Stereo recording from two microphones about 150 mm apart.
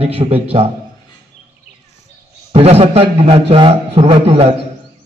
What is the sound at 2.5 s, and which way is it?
A man's voice, 40° right (ahead or behind).